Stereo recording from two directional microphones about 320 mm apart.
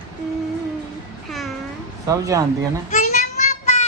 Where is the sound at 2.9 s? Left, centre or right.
Left.